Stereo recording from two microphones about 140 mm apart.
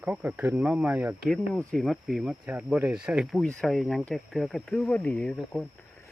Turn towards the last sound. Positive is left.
turn(degrees=5)  # may be behind; listen again after turning